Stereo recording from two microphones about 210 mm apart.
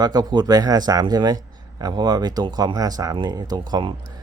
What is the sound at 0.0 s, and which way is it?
Speech, 20° right (ahead or behind).